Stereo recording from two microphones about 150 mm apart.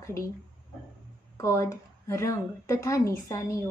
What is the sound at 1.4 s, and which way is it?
A woman's voice, 20° left (ahead or behind).